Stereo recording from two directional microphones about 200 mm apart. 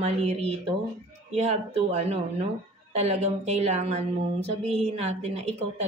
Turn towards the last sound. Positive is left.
turn(degrees=-35)  # may be behind; listen again after turning